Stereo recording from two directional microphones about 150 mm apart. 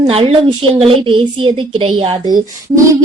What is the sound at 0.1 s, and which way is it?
A woman's voice, 40° right (ahead or behind).